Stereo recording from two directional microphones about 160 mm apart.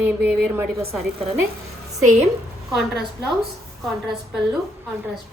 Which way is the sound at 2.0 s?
45° right (ahead or behind).